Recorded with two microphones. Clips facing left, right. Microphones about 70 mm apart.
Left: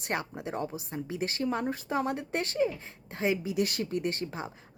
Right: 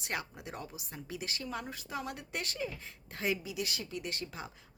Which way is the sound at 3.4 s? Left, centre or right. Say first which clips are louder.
Left 9 dB; left.